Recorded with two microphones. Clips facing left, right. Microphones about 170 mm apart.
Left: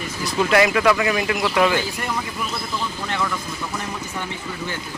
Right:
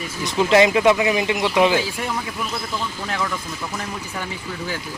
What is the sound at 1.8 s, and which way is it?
Speech, centre (ahead or behind).